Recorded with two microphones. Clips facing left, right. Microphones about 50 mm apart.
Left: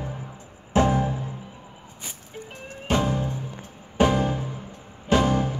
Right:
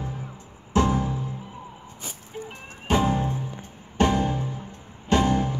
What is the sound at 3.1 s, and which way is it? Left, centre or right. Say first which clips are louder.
Music: right 2 dB; right.